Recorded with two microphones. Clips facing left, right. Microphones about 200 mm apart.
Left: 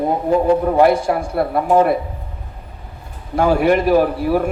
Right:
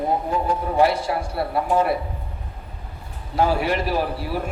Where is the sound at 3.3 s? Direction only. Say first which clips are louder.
Left 6 dB; 50° left (ahead or behind).